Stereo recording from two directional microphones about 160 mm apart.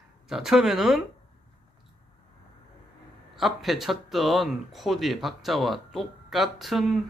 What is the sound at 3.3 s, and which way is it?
Speech, centre (ahead or behind).